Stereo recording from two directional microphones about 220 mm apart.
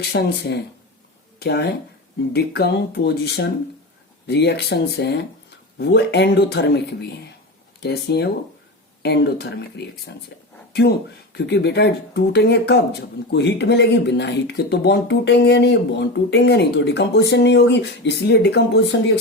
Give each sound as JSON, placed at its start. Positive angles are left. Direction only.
{"t": 0.0, "sound": "speech", "side_deg": 50}